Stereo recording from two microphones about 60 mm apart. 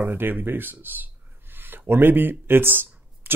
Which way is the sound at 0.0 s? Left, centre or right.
Right.